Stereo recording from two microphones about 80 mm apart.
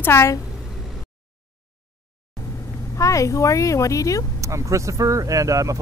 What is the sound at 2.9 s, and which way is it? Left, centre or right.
Speech, left.